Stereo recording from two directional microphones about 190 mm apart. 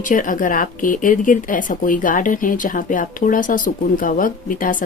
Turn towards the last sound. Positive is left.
turn(degrees=45)  # may be behind; listen again after turning